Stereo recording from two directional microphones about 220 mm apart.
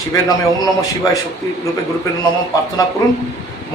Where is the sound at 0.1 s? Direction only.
15° left (ahead or behind).